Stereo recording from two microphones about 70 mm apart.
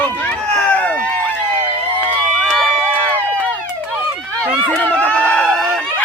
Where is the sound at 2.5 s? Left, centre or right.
Centre.